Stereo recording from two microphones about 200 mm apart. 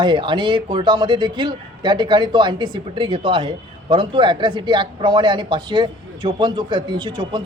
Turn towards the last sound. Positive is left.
turn(degrees=-25)  # may be behind; listen again after turning